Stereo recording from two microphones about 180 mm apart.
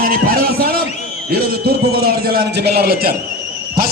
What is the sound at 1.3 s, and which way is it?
A man's voice, 60° right (ahead or behind).